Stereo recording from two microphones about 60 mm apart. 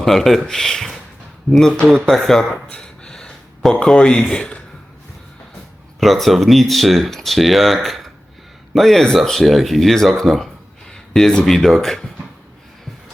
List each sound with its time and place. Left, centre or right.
0.0 s speech: centre
2.6 s a sound: centre
4.3 s speech: centre
6.0 s speech: centre